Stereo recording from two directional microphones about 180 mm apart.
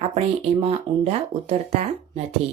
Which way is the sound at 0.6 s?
35° right (ahead or behind).